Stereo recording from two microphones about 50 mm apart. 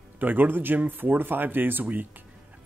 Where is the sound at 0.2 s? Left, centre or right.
Right.